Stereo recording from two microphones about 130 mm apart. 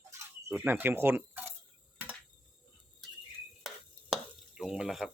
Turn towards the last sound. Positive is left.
turn(degrees=0)  # may be behind; listen again after turning